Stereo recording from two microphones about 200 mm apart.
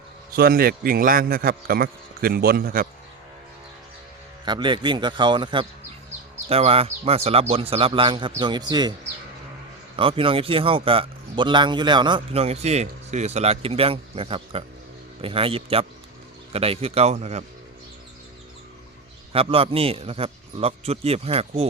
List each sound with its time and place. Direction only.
0.3 s a man's voice: 45° right (ahead or behind)
4.4 s a man's voice: 25° right (ahead or behind)
9.9 s a man's voice: 25° right (ahead or behind)
19.3 s a man's voice: 30° right (ahead or behind)